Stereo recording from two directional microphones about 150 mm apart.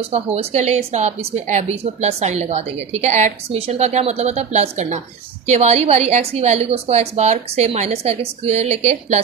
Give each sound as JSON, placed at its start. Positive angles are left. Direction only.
{"t": 0.1, "sound": "a woman's voice", "side_deg": -45}